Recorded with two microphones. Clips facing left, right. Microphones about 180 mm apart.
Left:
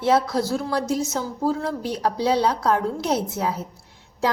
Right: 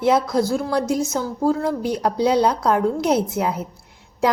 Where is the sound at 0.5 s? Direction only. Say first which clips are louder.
Right 3 dB; 15° right (ahead or behind).